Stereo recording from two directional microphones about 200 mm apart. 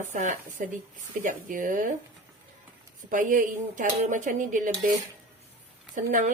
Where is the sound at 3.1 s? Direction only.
40° right (ahead or behind).